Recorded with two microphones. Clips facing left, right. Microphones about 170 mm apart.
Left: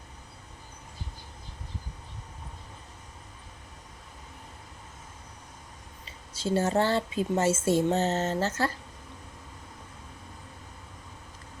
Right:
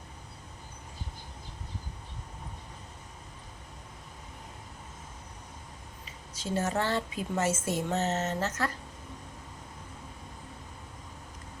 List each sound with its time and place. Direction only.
6.3 s speech: 30° left (ahead or behind)